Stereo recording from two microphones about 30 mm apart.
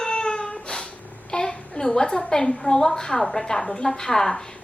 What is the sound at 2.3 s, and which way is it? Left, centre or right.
A woman's voice, centre.